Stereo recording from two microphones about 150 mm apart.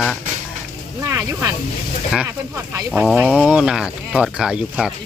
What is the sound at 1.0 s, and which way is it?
Snake, 20° right (ahead or behind).